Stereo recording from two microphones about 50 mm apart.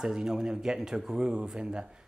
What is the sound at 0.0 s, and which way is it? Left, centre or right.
Speech, centre.